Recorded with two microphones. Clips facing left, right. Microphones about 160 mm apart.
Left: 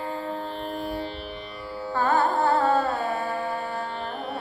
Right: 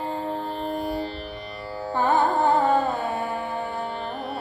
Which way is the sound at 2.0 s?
20° right (ahead or behind).